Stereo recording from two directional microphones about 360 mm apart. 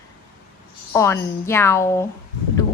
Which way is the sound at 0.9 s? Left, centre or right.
Centre.